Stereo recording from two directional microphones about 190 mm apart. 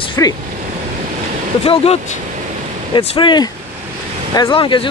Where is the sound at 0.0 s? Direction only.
25° left (ahead or behind).